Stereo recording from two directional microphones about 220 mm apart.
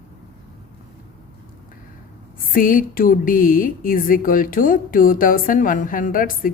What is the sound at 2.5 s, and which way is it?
A woman's voice, 40° left (ahead or behind).